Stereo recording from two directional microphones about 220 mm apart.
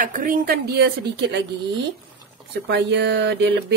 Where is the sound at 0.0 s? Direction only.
35° right (ahead or behind).